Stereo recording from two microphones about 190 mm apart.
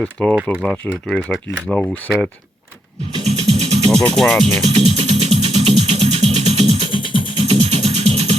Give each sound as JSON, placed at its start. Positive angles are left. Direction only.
{"t": 0.0, "sound": "speech", "side_deg": 5}
{"t": 3.2, "sound": "music", "side_deg": -35}
{"t": 3.9, "sound": "speech", "side_deg": 5}
{"t": 4.6, "sound": "music", "side_deg": -35}
{"t": 6.7, "sound": "music", "side_deg": 25}
{"t": 7.4, "sound": "music", "side_deg": -35}